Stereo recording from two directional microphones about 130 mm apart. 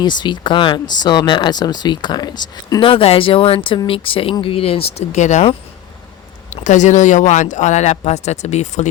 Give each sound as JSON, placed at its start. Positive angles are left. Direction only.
{"t": 0.0, "sound": "speech", "side_deg": 35}
{"t": 2.8, "sound": "speech", "side_deg": 45}
{"t": 6.5, "sound": "speech", "side_deg": 70}